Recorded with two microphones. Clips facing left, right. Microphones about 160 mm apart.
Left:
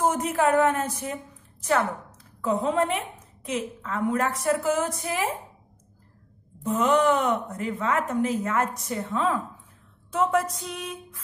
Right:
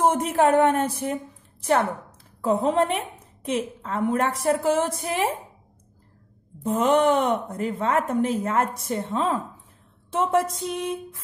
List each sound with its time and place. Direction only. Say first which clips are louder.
0.3 s a woman's voice: right 2 dB; 30° right (ahead or behind)
6.6 s a woman's voice: right 2 dB; 30° right (ahead or behind)